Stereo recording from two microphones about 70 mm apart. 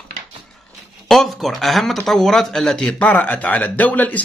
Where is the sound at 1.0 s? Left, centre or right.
Centre.